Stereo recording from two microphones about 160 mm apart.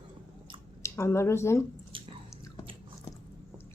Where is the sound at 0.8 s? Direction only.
15° left (ahead or behind).